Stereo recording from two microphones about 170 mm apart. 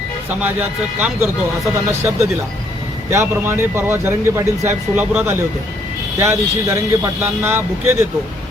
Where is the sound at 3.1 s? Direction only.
15° right (ahead or behind).